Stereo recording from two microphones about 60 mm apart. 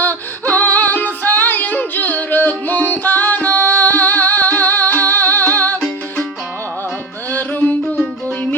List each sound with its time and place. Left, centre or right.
0.0 s female singing: left
7.3 s music: left